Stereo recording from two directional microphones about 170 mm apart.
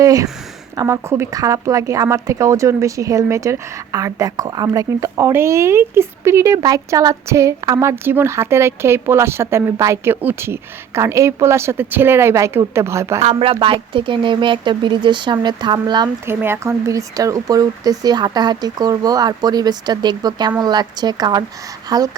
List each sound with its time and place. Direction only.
0.0 s speech: 20° right (ahead or behind)
13.2 s speech: 35° right (ahead or behind)
16.2 s speech: 15° right (ahead or behind)